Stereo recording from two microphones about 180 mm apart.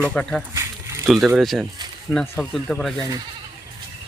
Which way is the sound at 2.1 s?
10° left (ahead or behind).